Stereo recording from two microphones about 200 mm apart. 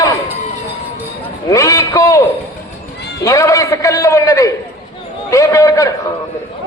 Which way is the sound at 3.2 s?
15° left (ahead or behind).